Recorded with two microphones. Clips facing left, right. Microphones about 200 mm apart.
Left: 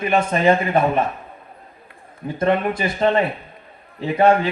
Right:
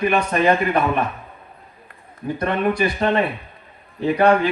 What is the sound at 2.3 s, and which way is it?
Speech, 25° left (ahead or behind).